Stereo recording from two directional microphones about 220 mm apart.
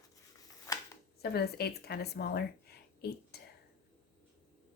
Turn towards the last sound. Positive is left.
turn(degrees=45)  # may be behind; listen again after turning